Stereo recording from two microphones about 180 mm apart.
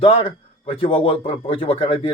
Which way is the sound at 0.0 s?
30° left (ahead or behind).